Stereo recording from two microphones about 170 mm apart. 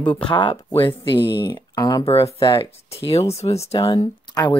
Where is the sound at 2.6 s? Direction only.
35° left (ahead or behind).